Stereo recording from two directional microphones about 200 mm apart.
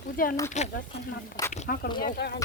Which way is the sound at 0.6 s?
35° left (ahead or behind).